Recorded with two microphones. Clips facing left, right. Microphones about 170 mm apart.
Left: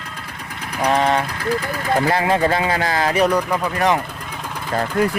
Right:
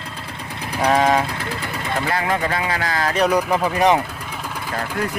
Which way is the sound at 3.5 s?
15° right (ahead or behind).